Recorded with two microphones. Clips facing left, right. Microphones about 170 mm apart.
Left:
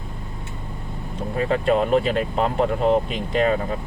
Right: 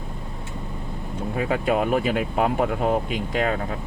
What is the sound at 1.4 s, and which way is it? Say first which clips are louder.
Speech: left 3 dB; 5° right (ahead or behind).